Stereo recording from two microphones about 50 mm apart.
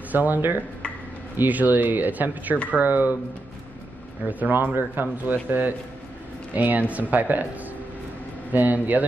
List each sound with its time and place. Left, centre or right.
0.1 s speech: right
4.3 s speech: right
8.5 s speech: right